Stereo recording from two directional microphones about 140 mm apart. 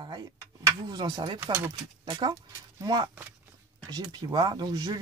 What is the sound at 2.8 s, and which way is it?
Speech, 30° right (ahead or behind).